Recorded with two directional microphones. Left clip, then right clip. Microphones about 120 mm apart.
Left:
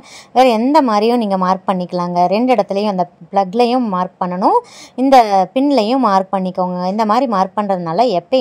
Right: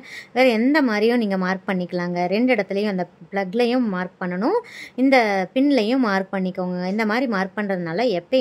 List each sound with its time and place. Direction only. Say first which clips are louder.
0.3 s a woman's voice: left 7 dB; 35° left (ahead or behind)